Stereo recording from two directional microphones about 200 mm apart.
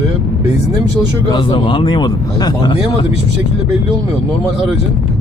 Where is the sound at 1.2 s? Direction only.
20° left (ahead or behind).